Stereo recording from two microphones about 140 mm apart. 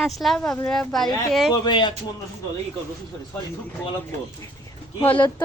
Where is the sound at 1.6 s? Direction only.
35° left (ahead or behind).